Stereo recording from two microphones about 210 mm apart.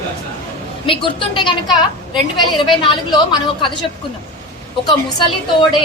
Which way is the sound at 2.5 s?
25° left (ahead or behind).